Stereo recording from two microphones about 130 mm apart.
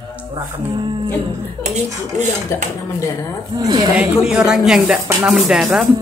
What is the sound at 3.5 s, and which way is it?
Speech, 35° right (ahead or behind).